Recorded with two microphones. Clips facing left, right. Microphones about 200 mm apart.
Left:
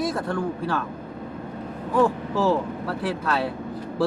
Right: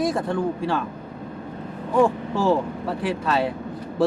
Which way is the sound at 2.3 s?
25° right (ahead or behind).